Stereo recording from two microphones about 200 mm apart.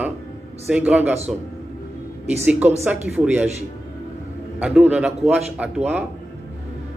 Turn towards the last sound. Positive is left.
turn(degrees=-5)  # may be behind; listen again after turning